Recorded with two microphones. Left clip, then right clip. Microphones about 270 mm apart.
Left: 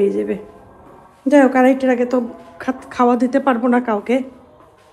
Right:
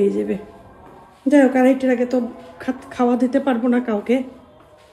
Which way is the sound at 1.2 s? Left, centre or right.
Centre.